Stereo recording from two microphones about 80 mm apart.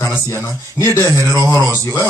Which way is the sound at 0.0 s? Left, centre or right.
Left.